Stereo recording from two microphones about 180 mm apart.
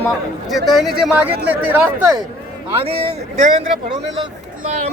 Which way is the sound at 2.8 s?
30° right (ahead or behind).